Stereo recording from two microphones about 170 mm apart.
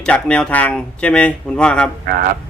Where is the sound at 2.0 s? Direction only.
60° right (ahead or behind).